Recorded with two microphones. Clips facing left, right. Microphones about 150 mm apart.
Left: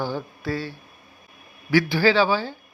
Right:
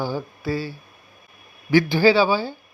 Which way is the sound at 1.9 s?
15° right (ahead or behind).